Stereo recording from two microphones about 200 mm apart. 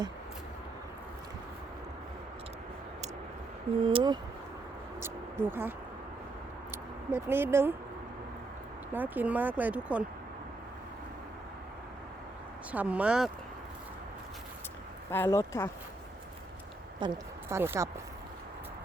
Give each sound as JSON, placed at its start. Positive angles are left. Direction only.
{"t": 3.8, "sound": "speech", "side_deg": -25}
{"t": 4.9, "sound": "speech", "side_deg": -10}
{"t": 8.9, "sound": "speech", "side_deg": -10}
{"t": 12.7, "sound": "speech", "side_deg": -5}
{"t": 15.1, "sound": "speech", "side_deg": 15}
{"t": 17.0, "sound": "speech", "side_deg": -15}